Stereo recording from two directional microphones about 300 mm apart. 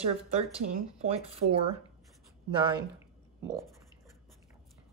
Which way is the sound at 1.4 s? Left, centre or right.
Right.